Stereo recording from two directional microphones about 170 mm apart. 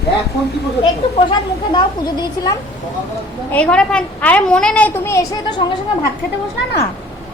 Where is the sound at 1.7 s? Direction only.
25° left (ahead or behind).